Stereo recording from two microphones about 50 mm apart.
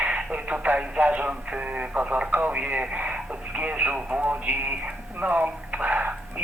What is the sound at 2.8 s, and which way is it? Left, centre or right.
Radio, right.